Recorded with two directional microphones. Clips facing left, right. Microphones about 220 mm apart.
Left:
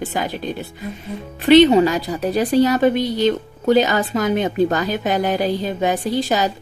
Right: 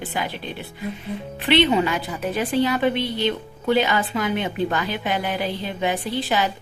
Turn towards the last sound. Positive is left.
turn(degrees=40)  # may be behind; listen again after turning